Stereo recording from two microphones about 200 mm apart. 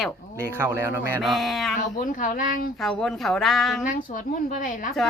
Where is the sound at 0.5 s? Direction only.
10° right (ahead or behind).